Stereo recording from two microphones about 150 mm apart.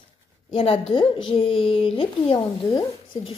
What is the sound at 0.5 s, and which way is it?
A woman's voice, 35° left (ahead or behind).